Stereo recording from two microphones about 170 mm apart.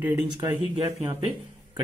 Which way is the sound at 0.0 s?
10° right (ahead or behind).